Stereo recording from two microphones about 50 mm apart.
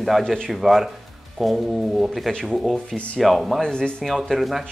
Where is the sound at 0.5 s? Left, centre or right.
Centre.